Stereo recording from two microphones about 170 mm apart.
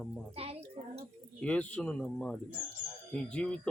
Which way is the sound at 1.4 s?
5° left (ahead or behind).